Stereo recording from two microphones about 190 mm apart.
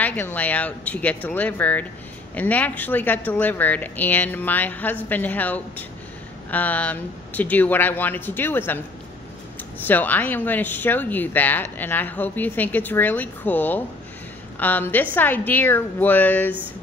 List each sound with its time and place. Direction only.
0.0 s speech: 10° left (ahead or behind)
9.8 s speech: 10° left (ahead or behind)